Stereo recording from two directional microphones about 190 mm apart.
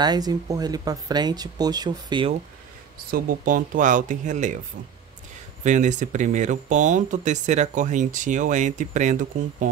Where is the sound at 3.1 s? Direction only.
45° right (ahead or behind).